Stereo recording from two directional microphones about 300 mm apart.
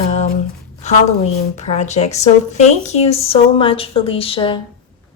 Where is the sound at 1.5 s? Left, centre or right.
Left.